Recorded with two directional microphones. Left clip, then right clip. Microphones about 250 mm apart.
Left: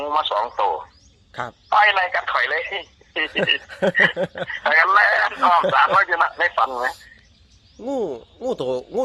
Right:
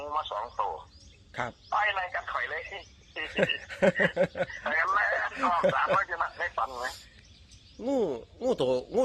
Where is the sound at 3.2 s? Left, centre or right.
Centre.